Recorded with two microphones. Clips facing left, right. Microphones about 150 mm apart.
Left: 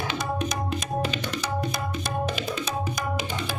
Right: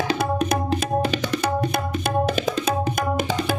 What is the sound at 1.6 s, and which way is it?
Tabla, 60° right (ahead or behind).